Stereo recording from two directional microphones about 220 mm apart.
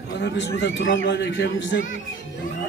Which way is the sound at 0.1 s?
50° left (ahead or behind).